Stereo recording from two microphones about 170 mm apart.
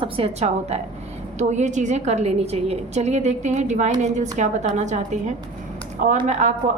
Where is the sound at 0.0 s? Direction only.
35° right (ahead or behind).